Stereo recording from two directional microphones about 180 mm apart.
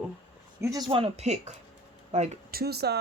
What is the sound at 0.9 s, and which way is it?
Speech, 30° right (ahead or behind).